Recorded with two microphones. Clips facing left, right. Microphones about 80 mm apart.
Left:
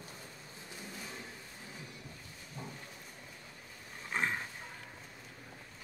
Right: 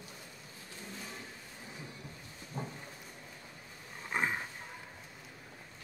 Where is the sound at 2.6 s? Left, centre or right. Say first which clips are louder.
Right 5 dB; right.